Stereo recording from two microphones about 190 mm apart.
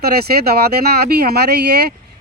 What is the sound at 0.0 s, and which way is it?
Speech, 55° right (ahead or behind).